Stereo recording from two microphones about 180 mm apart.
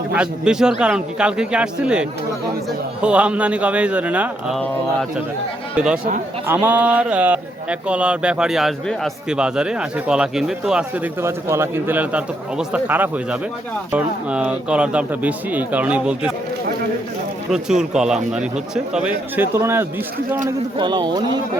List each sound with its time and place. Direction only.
0.1 s a man's voice: 5° right (ahead or behind)
5.7 s speech: 5° right (ahead or behind)
17.5 s a man's voice: 5° right (ahead or behind)
20.7 s speech: 25° right (ahead or behind)